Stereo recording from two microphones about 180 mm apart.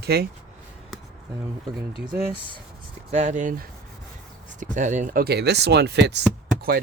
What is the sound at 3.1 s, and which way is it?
Speech, 40° right (ahead or behind).